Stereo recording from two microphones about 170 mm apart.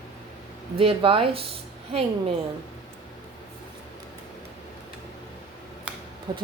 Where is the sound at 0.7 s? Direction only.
30° right (ahead or behind).